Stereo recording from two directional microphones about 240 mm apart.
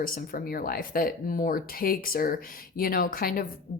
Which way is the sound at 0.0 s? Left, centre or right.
Left.